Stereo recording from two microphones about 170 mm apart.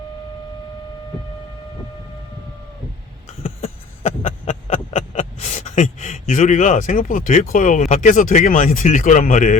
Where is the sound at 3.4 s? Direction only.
35° left (ahead or behind).